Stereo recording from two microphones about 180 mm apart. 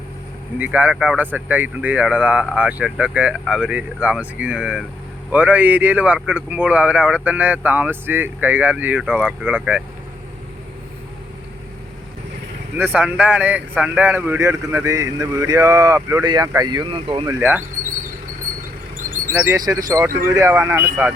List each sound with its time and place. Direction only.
0.6 s speech: 10° right (ahead or behind)
12.7 s speech: 5° right (ahead or behind); by 17.3 s 30° right (ahead or behind)
19.3 s speech: 15° right (ahead or behind)